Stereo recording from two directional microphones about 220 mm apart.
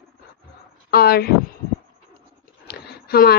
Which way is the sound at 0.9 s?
45° left (ahead or behind).